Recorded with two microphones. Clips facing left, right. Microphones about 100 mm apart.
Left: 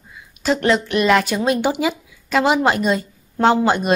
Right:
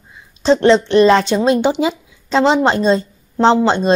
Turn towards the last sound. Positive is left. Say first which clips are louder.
# right 3 dB
turn(degrees=-25)  # may be behind; listen again after turning